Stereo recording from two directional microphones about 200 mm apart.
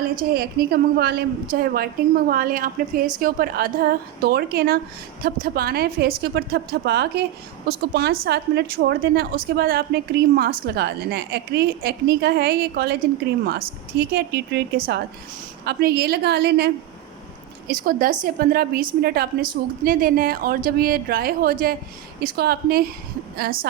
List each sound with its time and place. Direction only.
0.2 s a woman's voice: 50° right (ahead or behind)